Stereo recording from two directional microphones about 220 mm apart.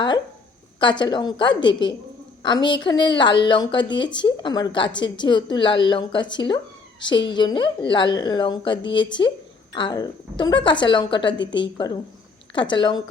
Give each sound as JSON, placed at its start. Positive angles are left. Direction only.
{"t": 0.8, "sound": "a woman's voice", "side_deg": 20}